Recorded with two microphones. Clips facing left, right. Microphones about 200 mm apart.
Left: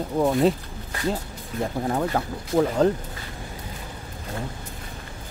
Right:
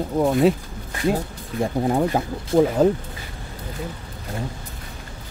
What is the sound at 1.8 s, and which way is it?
Speech, 20° right (ahead or behind).